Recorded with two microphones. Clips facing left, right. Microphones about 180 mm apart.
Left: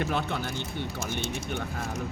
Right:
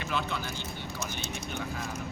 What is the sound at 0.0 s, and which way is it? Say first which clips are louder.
Speech: left 4 dB; 55° left (ahead or behind).